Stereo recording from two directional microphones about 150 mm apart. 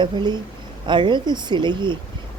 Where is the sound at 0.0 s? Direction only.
30° right (ahead or behind).